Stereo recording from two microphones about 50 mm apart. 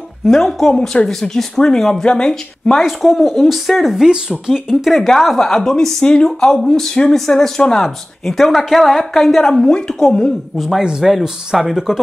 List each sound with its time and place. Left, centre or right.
0.3 s a woman's voice: centre
4.1 s speech: centre
4.6 s a woman's voice: centre
10.8 s speech: centre